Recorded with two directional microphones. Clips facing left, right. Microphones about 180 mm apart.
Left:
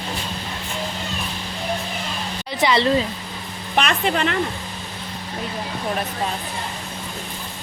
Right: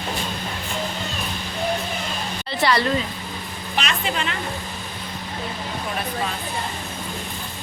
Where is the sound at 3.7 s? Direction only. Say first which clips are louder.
Left 5 dB; 55° left (ahead or behind).